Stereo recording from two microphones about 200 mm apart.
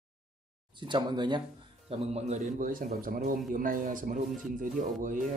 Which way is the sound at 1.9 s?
35° right (ahead or behind).